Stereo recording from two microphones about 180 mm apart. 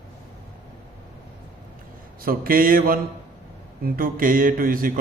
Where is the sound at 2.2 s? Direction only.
55° right (ahead or behind).